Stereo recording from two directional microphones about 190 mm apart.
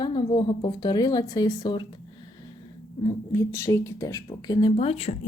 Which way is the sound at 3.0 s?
15° left (ahead or behind).